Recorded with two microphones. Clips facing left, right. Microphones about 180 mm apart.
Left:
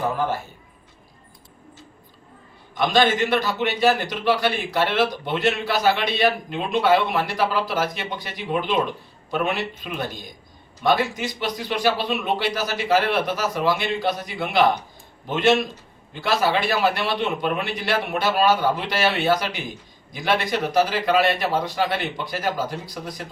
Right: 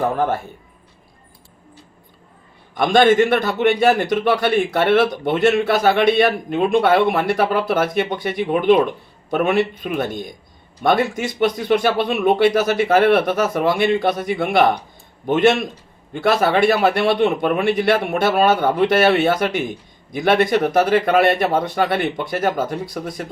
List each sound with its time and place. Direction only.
2.7 s a man's voice: 50° right (ahead or behind)
16.1 s a man's voice: 55° right (ahead or behind)